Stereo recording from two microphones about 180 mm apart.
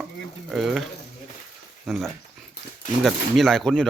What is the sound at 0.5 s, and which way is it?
Speech, centre (ahead or behind).